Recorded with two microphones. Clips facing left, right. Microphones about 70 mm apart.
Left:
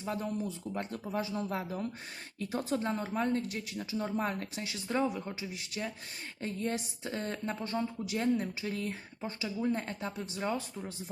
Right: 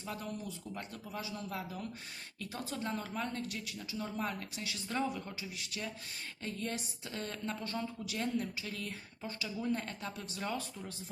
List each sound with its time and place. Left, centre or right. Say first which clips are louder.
0.0 s speech: left 6 dB; left
4.7 s speech: left 4 dB; left